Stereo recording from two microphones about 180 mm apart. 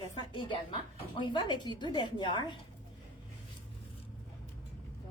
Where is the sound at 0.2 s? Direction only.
25° left (ahead or behind).